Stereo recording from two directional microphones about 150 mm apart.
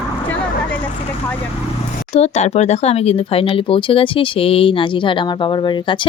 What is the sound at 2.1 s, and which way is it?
Speech, 45° left (ahead or behind).